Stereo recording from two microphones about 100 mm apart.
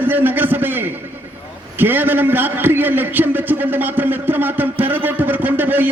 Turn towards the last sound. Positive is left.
turn(degrees=-20)  # may be behind; listen again after turning